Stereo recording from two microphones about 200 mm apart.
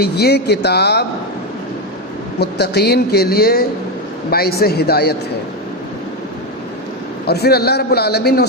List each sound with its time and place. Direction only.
0.0 s speech: 55° left (ahead or behind)
2.4 s speech: 55° left (ahead or behind)
7.3 s speech: 55° left (ahead or behind)